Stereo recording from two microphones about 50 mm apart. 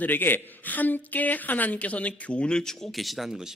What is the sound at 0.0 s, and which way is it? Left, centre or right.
A woman's voice, left.